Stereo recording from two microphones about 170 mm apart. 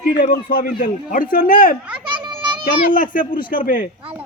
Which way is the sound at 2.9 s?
50° left (ahead or behind).